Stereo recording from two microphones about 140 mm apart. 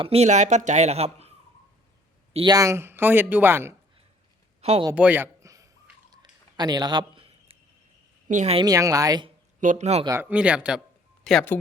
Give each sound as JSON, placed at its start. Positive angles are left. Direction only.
{"t": 0.0, "sound": "speech", "side_deg": -45}
{"t": 2.5, "sound": "speech", "side_deg": -20}
{"t": 4.9, "sound": "a sound", "side_deg": -10}
{"t": 8.3, "sound": "speech", "side_deg": -60}
{"t": 8.6, "sound": "speech", "side_deg": -25}
{"t": 9.6, "sound": "speech", "side_deg": -60}
{"t": 10.2, "sound": "speech", "side_deg": -10}
{"t": 11.2, "sound": "speech", "side_deg": 5}